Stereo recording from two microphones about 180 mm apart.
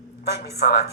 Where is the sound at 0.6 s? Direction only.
60° left (ahead or behind).